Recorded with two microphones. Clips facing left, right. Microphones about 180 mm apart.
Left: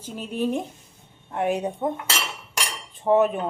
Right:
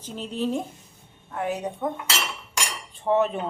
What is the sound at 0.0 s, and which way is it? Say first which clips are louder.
Speech: left 2 dB; 10° left (ahead or behind).